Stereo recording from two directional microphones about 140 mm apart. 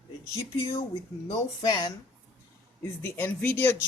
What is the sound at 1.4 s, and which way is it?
Speech, 25° left (ahead or behind).